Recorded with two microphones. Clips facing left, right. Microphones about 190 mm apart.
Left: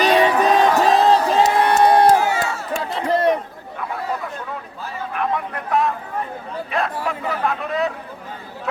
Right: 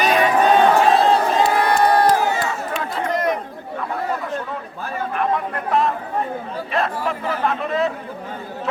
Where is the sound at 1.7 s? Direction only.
20° left (ahead or behind).